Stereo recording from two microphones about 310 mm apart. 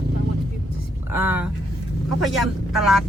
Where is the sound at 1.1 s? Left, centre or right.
Centre.